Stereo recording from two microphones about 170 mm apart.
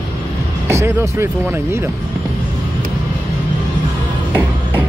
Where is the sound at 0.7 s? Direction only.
15° right (ahead or behind).